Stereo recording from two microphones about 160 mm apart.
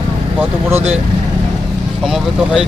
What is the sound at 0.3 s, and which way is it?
Speech, 10° right (ahead or behind).